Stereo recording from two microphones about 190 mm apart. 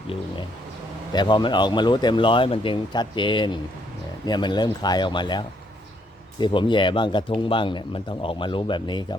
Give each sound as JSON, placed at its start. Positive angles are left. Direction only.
{"t": 1.1, "sound": "speech", "side_deg": 25}